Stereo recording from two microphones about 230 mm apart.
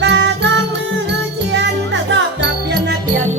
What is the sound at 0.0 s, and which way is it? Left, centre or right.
Music, right.